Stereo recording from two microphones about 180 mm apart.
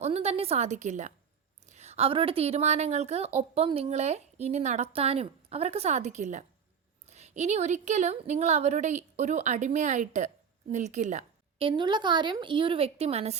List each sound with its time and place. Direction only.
0.0 s speech: 35° right (ahead or behind)
11.6 s a woman's voice: 25° right (ahead or behind)